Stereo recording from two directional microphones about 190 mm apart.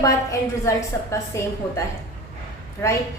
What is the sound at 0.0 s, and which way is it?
A woman's voice, 15° left (ahead or behind).